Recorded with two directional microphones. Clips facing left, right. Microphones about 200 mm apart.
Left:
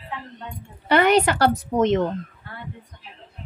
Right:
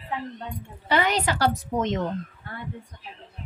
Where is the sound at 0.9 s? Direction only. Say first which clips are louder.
Left 6 dB; 60° left (ahead or behind).